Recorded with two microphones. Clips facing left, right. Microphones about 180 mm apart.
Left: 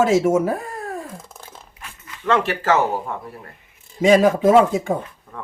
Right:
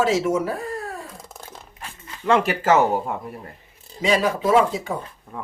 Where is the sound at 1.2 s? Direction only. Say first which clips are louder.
Right 1 dB; centre (ahead or behind).